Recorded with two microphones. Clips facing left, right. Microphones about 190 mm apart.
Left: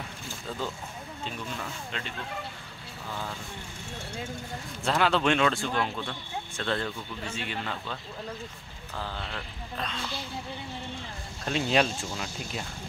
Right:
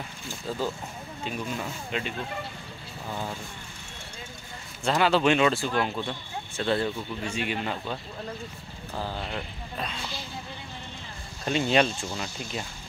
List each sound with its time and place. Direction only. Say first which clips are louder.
0.5 s speech: right 4 dB; 10° right (ahead or behind)
4.8 s speech: right 3 dB; centre (ahead or behind)
11.4 s speech: right 2 dB; centre (ahead or behind)